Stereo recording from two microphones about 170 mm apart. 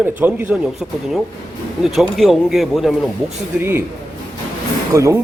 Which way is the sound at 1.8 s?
Centre (ahead or behind).